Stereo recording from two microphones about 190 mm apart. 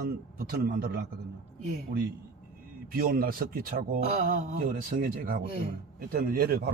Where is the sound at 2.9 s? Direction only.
50° right (ahead or behind).